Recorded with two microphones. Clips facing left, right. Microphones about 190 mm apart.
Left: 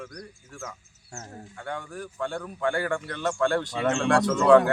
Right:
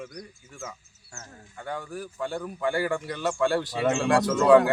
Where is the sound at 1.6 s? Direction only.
5° right (ahead or behind).